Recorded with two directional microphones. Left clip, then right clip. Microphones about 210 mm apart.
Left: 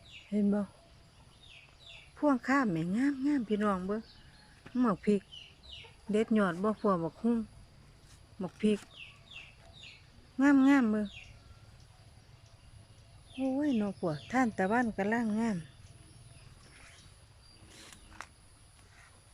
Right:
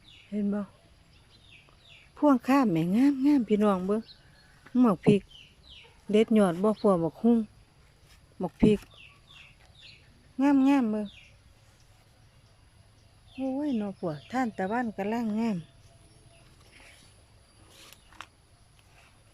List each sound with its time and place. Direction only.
0.3 s speech: centre (ahead or behind)
2.1 s speech: 15° right (ahead or behind)
10.3 s speech: centre (ahead or behind)
13.4 s speech: centre (ahead or behind)